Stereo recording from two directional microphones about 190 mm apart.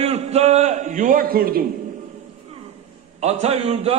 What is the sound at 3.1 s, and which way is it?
Speech, 35° right (ahead or behind).